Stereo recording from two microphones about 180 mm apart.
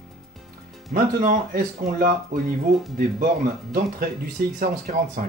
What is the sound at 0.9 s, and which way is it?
Speech, 50° right (ahead or behind).